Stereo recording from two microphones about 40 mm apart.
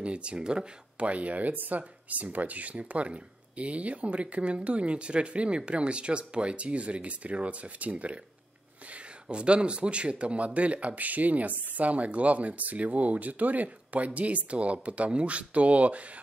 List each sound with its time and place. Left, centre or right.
0.0 s speech: right
1.0 s speech: right